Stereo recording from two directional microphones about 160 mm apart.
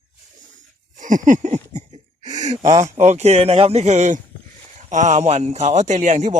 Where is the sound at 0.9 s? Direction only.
55° right (ahead or behind).